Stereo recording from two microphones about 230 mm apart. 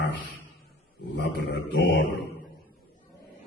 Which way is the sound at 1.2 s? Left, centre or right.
Left.